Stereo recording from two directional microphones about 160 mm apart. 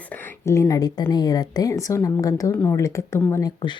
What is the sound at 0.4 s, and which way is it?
Speech, 15° left (ahead or behind).